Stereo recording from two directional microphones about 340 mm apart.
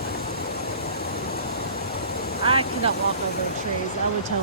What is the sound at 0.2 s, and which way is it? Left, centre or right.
Vehicle, left.